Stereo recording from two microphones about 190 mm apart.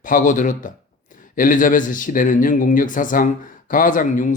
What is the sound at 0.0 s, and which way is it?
Speech, 45° left (ahead or behind).